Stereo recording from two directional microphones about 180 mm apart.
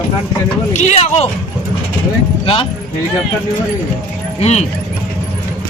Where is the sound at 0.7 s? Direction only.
40° left (ahead or behind).